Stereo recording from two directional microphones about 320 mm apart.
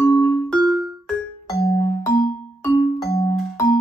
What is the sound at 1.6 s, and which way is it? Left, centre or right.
Music, centre.